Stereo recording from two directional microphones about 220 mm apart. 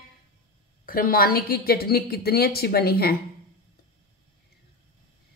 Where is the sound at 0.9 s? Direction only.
40° left (ahead or behind).